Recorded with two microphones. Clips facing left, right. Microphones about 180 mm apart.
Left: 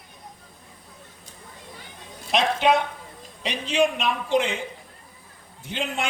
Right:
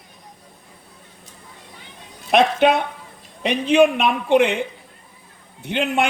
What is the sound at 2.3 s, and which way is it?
A man's voice, 55° right (ahead or behind).